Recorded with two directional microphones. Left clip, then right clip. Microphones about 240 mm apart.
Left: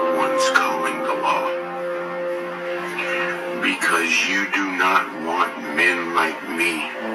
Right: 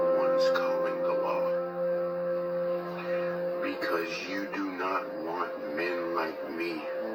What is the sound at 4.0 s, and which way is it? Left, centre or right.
Speech, centre.